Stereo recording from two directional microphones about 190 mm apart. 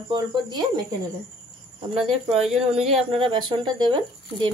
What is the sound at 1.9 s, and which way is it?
Speech, 30° right (ahead or behind).